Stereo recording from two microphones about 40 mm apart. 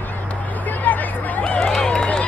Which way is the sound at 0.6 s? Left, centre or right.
Left.